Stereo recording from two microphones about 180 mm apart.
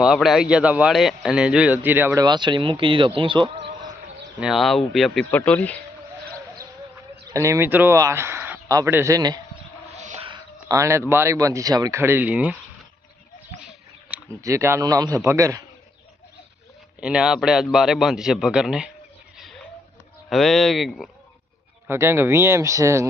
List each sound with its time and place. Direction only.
0.0 s a man's voice: centre (ahead or behind)
2.2 s speech: 25° right (ahead or behind)
3.2 s a sound: 25° right (ahead or behind)
4.4 s a man's voice: centre (ahead or behind)
7.3 s speech: 15° right (ahead or behind)
10.0 s music: 40° right (ahead or behind)
10.2 s speech: 25° right (ahead or behind)
13.6 s bird: 5° right (ahead or behind)
14.4 s a man's voice: 15° right (ahead or behind)
17.0 s a man's voice: 5° right (ahead or behind)
20.3 s a man's voice: centre (ahead or behind)
21.8 s a man's voice: 15° right (ahead or behind)